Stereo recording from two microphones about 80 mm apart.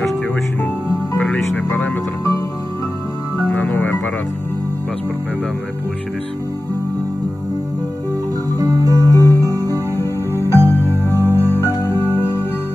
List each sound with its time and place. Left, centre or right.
1.1 s music: centre
3.3 s music: left
8.5 s music: right
9.0 s music: left
9.4 s music: right
9.7 s music: left